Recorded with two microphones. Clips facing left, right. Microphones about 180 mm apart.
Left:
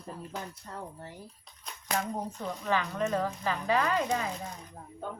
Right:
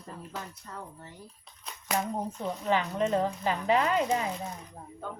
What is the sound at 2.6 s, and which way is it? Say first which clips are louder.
Speech: right 2 dB; 20° right (ahead or behind).